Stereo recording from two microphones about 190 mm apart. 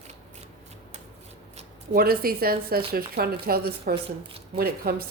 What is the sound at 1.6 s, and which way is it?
Speech, 50° right (ahead or behind).